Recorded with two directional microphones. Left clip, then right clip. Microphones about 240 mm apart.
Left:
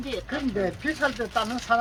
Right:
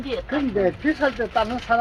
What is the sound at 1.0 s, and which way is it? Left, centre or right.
Speech, right.